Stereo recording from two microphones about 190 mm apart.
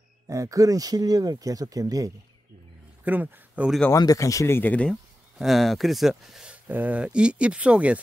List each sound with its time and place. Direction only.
0.3 s speech: 15° right (ahead or behind)
3.8 s speech: 15° left (ahead or behind); by 8.0 s 5° right (ahead or behind)